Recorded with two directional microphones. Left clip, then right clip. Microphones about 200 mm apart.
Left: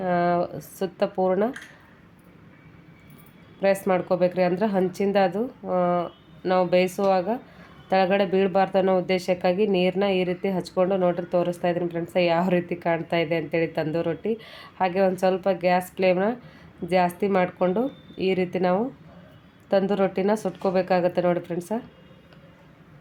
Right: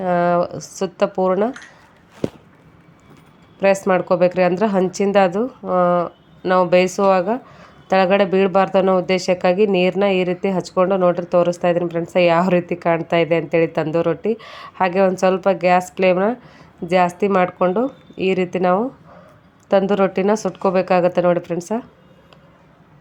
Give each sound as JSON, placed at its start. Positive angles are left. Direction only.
{"t": 0.0, "sound": "speech", "side_deg": -15}
{"t": 0.5, "sound": "a woman's voice", "side_deg": 5}
{"t": 0.8, "sound": "speech", "side_deg": -15}
{"t": 3.8, "sound": "speech", "side_deg": -15}